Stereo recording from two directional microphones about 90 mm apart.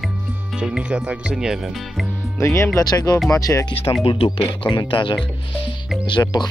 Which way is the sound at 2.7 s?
45° left (ahead or behind).